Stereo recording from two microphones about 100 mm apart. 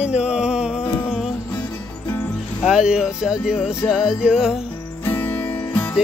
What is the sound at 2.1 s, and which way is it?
Music, 20° left (ahead or behind).